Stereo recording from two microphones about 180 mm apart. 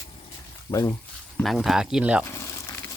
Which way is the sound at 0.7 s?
20° left (ahead or behind).